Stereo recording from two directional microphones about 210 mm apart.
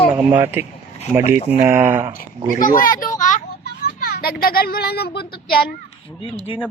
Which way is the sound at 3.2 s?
35° left (ahead or behind).